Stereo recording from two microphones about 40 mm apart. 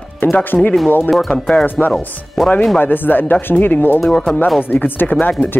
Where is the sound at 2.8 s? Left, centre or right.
Left.